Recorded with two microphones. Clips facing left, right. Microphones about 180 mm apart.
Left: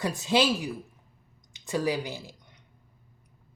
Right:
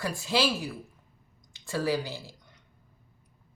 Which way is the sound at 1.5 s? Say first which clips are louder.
Left 1 dB; 20° left (ahead or behind).